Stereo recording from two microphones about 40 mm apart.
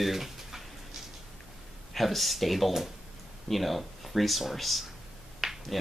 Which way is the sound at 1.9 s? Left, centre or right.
Centre.